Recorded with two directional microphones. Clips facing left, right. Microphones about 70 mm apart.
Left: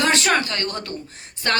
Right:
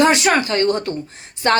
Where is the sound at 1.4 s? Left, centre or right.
Right.